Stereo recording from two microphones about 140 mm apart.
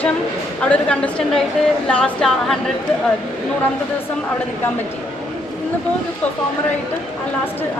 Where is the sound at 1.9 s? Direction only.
5° left (ahead or behind).